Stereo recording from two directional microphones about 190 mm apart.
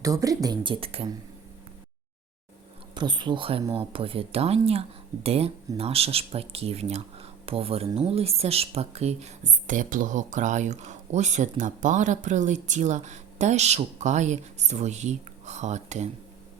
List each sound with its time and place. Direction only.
0.0 s speech: 15° right (ahead or behind)
2.9 s speech: 25° right (ahead or behind); by 16.0 s 40° right (ahead or behind)